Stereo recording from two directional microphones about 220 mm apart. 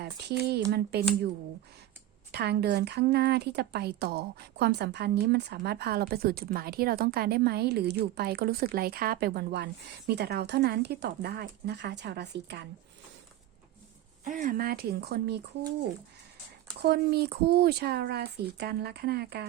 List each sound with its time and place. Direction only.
0.7 s a woman's voice: 45° right (ahead or behind)
2.3 s a woman's voice: 50° right (ahead or behind)
14.3 s a woman's voice: 35° right (ahead or behind)
16.8 s a woman's voice: 50° right (ahead or behind)